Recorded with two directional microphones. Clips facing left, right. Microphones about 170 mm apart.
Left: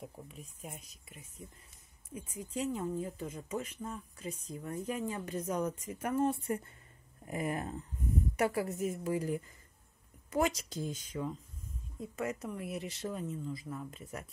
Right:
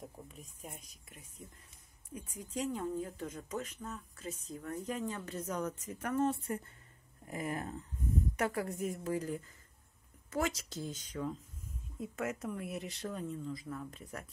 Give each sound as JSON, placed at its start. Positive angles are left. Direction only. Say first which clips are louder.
{"t": 0.0, "sound": "speech", "louder": "left 2 dB", "side_deg": 5}
{"t": 12.0, "sound": "speech", "louder": "left 1 dB", "side_deg": 0}